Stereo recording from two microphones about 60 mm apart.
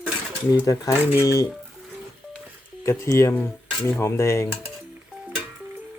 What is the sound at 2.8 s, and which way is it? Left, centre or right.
Speech, left.